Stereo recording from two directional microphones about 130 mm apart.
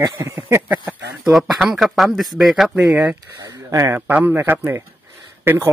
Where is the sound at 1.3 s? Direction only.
Centre (ahead or behind).